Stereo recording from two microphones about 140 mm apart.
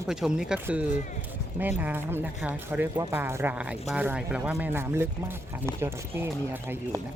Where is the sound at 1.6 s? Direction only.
10° right (ahead or behind).